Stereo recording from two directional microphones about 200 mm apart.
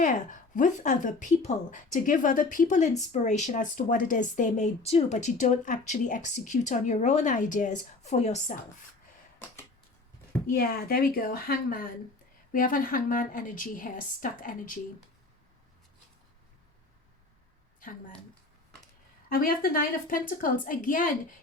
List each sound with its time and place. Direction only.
0.0 s speech: 40° left (ahead or behind)
10.5 s a woman's voice: 50° left (ahead or behind)
19.3 s a woman's voice: 50° left (ahead or behind)